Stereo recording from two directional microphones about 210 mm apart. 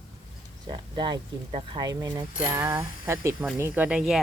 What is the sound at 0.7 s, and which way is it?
Speech, 20° right (ahead or behind).